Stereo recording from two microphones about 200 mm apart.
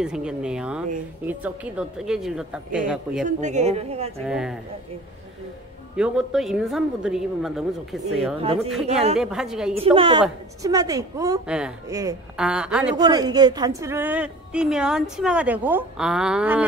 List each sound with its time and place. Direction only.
0.0 s a woman's voice: 5° right (ahead or behind)
3.3 s a woman's voice: 35° right (ahead or behind)
4.3 s a woman's voice: centre (ahead or behind)
5.9 s a woman's voice: 5° right (ahead or behind)
8.4 s a woman's voice: 30° right (ahead or behind)
9.2 s a woman's voice: centre (ahead or behind)
9.8 s a woman's voice: 25° right (ahead or behind)
11.4 s a woman's voice: 5° right (ahead or behind)
11.9 s a woman's voice: 15° right (ahead or behind)
12.4 s a woman's voice: 5° right (ahead or behind)
12.9 s a woman's voice: 20° right (ahead or behind)